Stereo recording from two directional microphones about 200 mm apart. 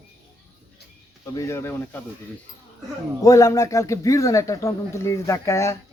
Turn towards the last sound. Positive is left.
turn(degrees=15)  # may be behind; listen again after turning